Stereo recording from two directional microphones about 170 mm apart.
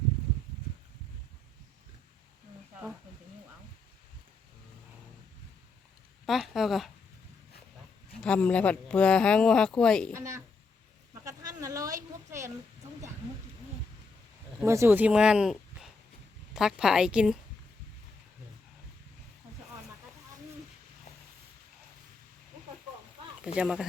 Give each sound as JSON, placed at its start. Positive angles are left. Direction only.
{"t": 6.2, "sound": "speech", "side_deg": 0}
{"t": 8.2, "sound": "speech", "side_deg": 5}
{"t": 10.1, "sound": "a woman's voice", "side_deg": -15}
{"t": 11.1, "sound": "a sound", "side_deg": -20}
{"t": 14.6, "sound": "speech", "side_deg": -15}
{"t": 23.6, "sound": "speech", "side_deg": -5}